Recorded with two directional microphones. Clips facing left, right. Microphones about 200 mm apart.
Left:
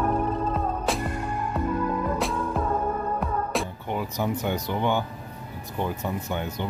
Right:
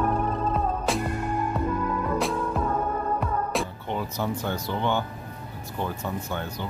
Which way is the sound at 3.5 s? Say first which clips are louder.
Even; 10° left (ahead or behind).